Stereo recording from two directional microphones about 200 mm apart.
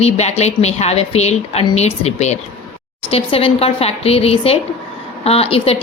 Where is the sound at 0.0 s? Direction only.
35° left (ahead or behind).